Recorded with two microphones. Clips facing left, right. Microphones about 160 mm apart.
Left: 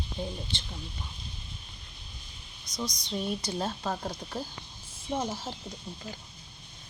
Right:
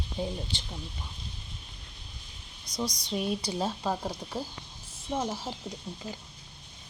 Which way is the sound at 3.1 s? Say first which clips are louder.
Right 1 dB; 10° right (ahead or behind).